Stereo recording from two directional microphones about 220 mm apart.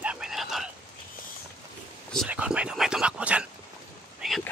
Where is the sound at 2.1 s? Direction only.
5° right (ahead or behind).